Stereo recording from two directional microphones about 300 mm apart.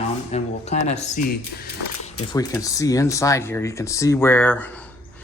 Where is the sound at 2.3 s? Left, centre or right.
Centre.